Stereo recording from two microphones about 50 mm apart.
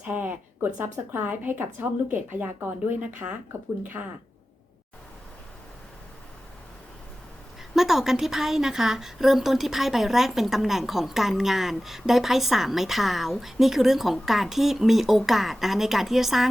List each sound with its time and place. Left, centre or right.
0.0 s a woman's voice: right
3.0 s a woman's voice: right
4.0 s speech: right
7.8 s a woman's voice: centre